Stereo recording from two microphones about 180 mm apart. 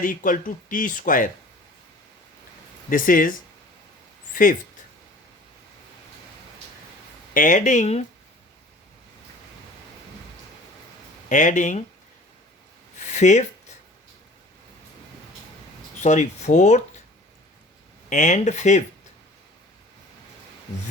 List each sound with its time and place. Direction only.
0.0 s speech: 50° left (ahead or behind)
2.9 s speech: 50° left (ahead or behind)
7.3 s speech: 45° left (ahead or behind)
11.3 s speech: 45° left (ahead or behind)
13.0 s a sound: 40° left (ahead or behind)
16.0 s speech: 40° left (ahead or behind)
18.1 s speech: 45° left (ahead or behind)